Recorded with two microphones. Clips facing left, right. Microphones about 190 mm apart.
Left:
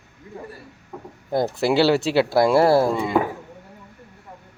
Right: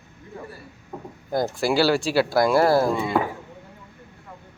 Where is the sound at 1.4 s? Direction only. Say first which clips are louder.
Left 3 dB; 25° left (ahead or behind).